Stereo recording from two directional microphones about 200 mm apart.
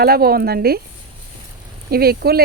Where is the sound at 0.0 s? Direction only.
50° right (ahead or behind).